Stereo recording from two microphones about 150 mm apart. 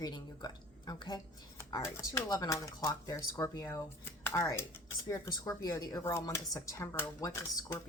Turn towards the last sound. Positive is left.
turn(degrees=20)  # may be behind; listen again after turning